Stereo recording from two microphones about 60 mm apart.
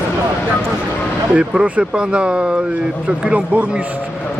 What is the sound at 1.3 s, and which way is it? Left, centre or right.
Speech, centre.